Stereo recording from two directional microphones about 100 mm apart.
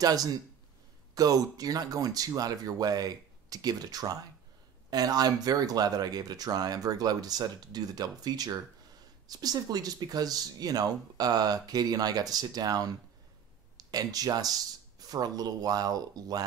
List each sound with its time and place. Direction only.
0.0 s speech: 40° right (ahead or behind)